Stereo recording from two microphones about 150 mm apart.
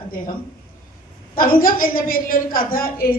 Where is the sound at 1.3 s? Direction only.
70° left (ahead or behind).